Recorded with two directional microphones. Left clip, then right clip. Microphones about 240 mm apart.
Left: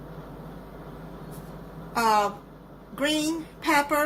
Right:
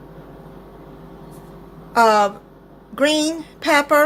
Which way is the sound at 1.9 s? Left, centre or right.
Right.